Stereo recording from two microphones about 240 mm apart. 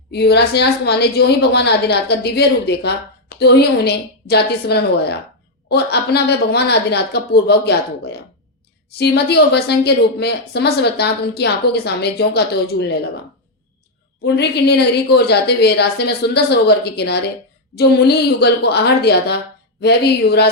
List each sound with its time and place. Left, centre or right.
0.1 s a woman's voice: left
14.3 s a woman's voice: left